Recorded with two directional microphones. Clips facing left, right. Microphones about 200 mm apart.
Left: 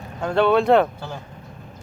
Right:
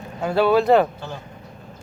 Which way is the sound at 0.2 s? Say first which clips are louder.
Even; 5° right (ahead or behind).